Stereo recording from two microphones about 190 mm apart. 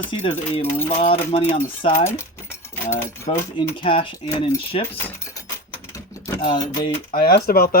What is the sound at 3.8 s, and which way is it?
Speech, 25° left (ahead or behind).